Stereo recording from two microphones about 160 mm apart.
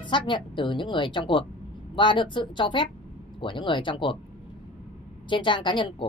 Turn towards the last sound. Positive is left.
turn(degrees=30)  # may be behind; listen again after turning